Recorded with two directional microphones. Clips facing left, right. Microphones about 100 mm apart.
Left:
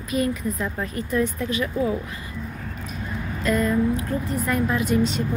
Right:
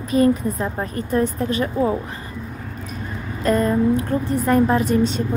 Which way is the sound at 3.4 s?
35° right (ahead or behind).